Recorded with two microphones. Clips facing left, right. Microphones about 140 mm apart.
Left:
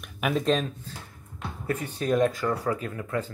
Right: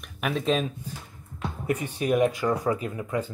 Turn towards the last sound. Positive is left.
turn(degrees=-15)  # may be behind; listen again after turning